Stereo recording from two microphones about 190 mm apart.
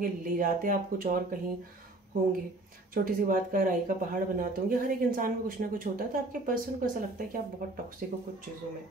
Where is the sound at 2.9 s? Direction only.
50° right (ahead or behind).